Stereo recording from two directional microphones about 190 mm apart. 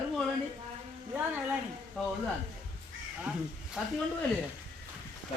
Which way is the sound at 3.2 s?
5° right (ahead or behind).